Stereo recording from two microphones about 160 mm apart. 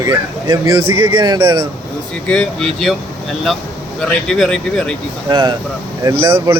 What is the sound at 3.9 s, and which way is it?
Speech, 5° left (ahead or behind).